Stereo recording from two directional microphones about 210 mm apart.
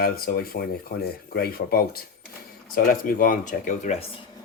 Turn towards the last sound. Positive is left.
turn(degrees=35)  # may be behind; listen again after turning